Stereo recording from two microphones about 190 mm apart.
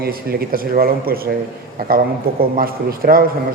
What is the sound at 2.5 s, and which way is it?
Speech, 50° right (ahead or behind).